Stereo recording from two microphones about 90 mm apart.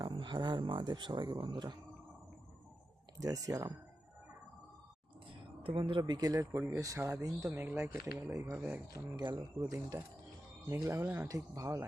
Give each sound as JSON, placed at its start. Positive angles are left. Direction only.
{"t": 0.1, "sound": "speech", "side_deg": -60}
{"t": 3.2, "sound": "speech", "side_deg": -40}
{"t": 5.3, "sound": "a sound", "side_deg": -75}
{"t": 6.0, "sound": "speech", "side_deg": -50}
{"t": 7.5, "sound": "speech", "side_deg": -20}
{"t": 8.0, "sound": "speech", "side_deg": -35}
{"t": 8.5, "sound": "speech", "side_deg": -15}
{"t": 9.1, "sound": "speech", "side_deg": -55}
{"t": 9.6, "sound": "speech", "side_deg": -40}